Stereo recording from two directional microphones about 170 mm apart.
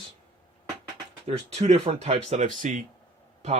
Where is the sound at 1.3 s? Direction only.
40° right (ahead or behind).